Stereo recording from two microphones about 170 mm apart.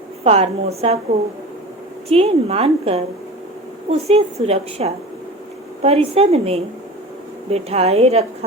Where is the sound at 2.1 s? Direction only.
35° right (ahead or behind).